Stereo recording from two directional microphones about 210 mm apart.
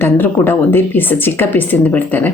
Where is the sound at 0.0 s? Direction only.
10° left (ahead or behind).